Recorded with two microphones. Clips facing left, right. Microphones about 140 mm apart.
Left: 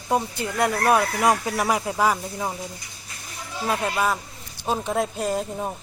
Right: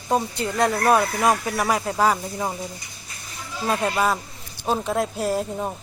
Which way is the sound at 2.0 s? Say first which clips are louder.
Right 3 dB; 5° left (ahead or behind).